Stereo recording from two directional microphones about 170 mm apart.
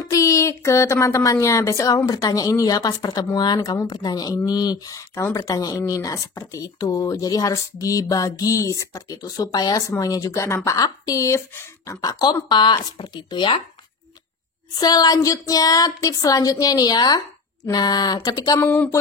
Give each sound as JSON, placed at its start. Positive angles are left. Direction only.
{"t": 0.0, "sound": "speech", "side_deg": 20}
{"t": 14.8, "sound": "speech", "side_deg": 25}
{"t": 18.7, "sound": "a sound", "side_deg": 10}